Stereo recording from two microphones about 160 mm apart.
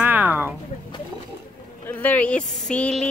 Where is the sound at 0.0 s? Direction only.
10° right (ahead or behind).